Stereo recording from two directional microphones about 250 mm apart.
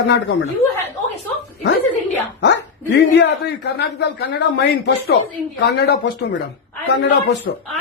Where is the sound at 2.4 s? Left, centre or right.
Left.